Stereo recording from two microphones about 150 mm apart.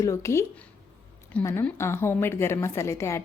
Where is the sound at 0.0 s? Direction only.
20° left (ahead or behind).